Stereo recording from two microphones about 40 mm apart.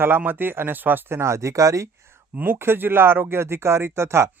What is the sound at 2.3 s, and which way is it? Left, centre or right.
Speech, right.